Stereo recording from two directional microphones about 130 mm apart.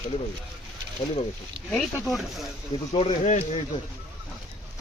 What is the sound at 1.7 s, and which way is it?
Speech, centre (ahead or behind).